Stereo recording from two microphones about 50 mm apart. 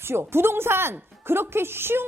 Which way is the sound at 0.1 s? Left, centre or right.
Right.